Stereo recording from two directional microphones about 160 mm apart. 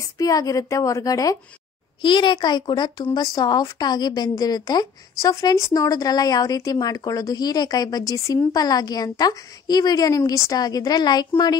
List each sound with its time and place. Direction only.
0.0 s speech: 20° left (ahead or behind)